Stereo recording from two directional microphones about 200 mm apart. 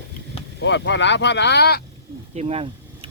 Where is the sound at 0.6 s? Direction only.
60° left (ahead or behind).